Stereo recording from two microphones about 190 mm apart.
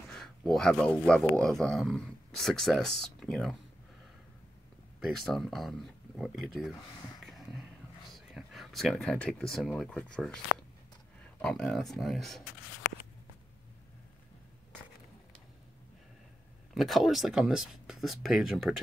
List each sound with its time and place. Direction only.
0.1 s speech: 5° left (ahead or behind)
5.0 s speech: centre (ahead or behind)
7.2 s a sound: centre (ahead or behind)
9.5 s speech: centre (ahead or behind)
11.4 s speech: 5° left (ahead or behind)
16.7 s speech: centre (ahead or behind)